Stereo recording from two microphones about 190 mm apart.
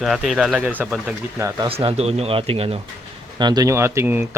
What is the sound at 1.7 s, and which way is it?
Speech, 30° right (ahead or behind).